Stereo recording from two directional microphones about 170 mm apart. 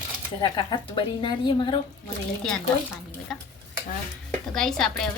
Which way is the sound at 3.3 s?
Centre (ahead or behind).